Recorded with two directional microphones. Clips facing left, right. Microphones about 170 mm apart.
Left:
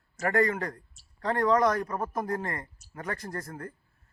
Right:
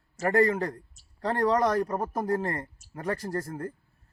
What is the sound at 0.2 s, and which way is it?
A man's voice, 35° right (ahead or behind).